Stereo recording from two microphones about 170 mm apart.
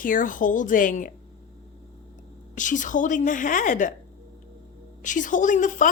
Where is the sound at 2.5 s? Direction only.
50° left (ahead or behind).